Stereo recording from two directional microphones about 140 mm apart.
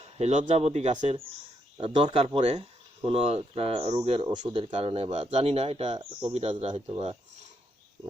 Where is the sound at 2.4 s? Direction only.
55° right (ahead or behind).